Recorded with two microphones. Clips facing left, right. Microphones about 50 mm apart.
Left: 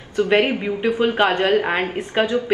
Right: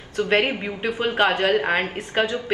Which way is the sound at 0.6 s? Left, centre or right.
Centre.